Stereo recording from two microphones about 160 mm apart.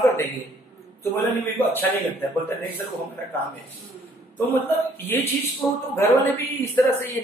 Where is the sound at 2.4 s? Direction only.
10° left (ahead or behind).